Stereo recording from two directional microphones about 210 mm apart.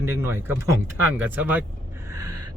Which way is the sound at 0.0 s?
10° right (ahead or behind).